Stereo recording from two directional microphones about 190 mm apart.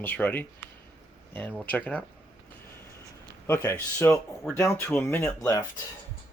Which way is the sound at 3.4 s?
15° left (ahead or behind).